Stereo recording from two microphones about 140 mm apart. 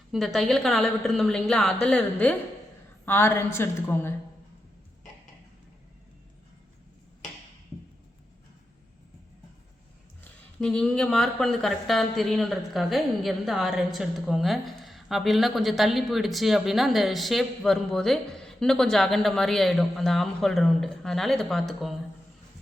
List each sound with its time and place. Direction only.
0.3 s a woman's voice: centre (ahead or behind); by 4.1 s 15° left (ahead or behind)
10.6 s speech: 5° left (ahead or behind)